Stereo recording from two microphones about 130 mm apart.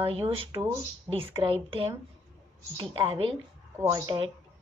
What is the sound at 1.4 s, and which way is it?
A woman's voice, 45° right (ahead or behind).